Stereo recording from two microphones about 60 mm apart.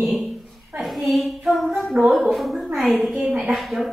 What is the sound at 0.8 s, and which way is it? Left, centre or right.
A woman's voice, centre.